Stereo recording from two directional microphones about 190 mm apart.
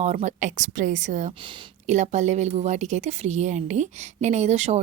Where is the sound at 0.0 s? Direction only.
40° right (ahead or behind).